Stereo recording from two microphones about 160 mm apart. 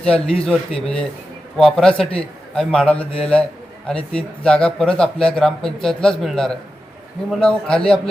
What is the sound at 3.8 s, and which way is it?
A man's voice, 5° left (ahead or behind).